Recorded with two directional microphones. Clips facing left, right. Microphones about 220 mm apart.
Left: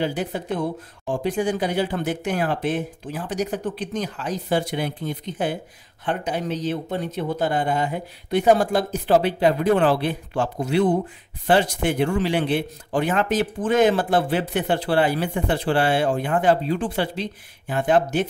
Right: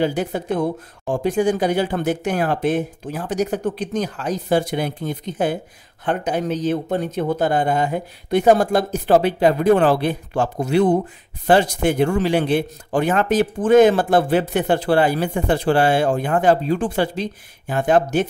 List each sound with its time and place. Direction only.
0.0 s a man's voice: 45° right (ahead or behind)